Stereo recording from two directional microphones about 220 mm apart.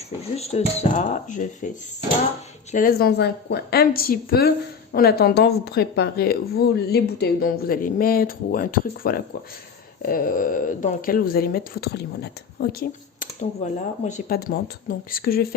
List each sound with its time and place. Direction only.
0.2 s speech: 30° left (ahead or behind)
2.7 s a woman's voice: 40° left (ahead or behind)